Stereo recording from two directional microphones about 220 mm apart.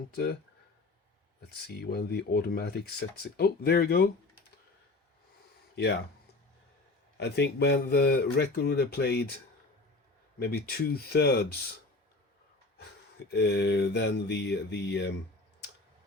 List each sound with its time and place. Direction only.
0.1 s speech: 45° left (ahead or behind)
1.4 s speech: 45° left (ahead or behind)
5.7 s speech: 50° left (ahead or behind)
7.2 s speech: 50° left (ahead or behind)
10.4 s speech: 45° left (ahead or behind)
13.3 s speech: 50° left (ahead or behind)